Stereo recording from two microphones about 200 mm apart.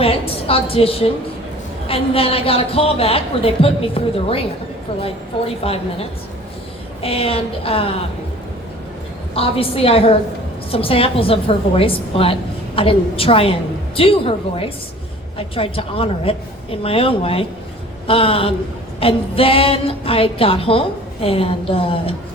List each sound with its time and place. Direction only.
0.0 s a woman's voice: 30° left (ahead or behind)
5.6 s a woman's voice: 30° left (ahead or behind)
9.3 s a woman's voice: 30° left (ahead or behind)